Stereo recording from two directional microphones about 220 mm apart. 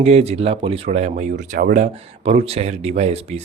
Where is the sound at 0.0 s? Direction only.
30° right (ahead or behind).